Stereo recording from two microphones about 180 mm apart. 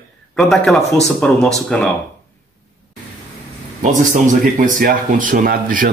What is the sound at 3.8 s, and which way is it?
Speech, 45° right (ahead or behind).